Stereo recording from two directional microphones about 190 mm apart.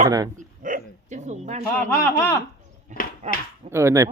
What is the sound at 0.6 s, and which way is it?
Bow-wow, 40° right (ahead or behind).